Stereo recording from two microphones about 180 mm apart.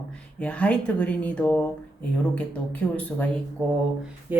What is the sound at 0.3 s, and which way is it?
Speech, 5° left (ahead or behind).